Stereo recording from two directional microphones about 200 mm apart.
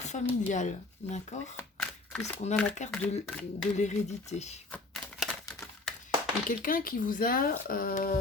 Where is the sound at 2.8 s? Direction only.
35° left (ahead or behind).